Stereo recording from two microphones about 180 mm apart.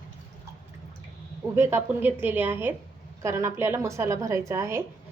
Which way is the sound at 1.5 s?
15° right (ahead or behind).